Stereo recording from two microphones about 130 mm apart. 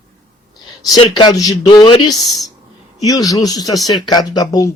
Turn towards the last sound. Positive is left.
turn(degrees=30)  # may be behind; listen again after turning